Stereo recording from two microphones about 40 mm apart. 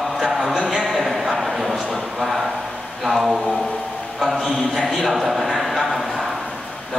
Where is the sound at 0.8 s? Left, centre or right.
Centre.